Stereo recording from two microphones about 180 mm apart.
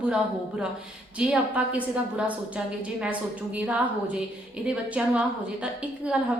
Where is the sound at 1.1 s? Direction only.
5° right (ahead or behind).